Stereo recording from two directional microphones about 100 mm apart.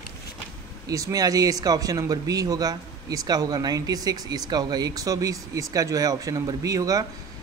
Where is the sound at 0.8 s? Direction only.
35° right (ahead or behind).